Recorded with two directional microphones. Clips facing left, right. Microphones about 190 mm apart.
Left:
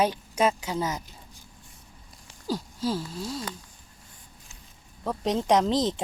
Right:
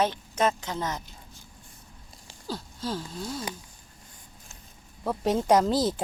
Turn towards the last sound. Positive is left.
turn(degrees=-5)  # may be behind; listen again after turning